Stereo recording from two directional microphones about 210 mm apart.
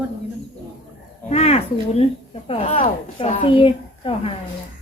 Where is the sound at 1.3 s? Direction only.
30° left (ahead or behind).